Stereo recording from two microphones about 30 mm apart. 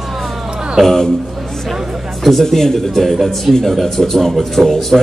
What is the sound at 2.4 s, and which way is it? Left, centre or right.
Speech, centre.